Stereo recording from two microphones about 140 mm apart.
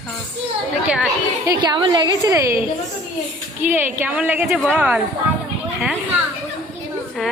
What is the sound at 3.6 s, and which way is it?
A woman's voice, 15° right (ahead or behind).